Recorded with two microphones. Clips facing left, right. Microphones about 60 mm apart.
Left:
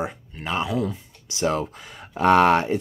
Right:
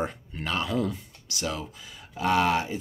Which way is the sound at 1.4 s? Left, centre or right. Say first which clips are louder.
Left 9 dB; left.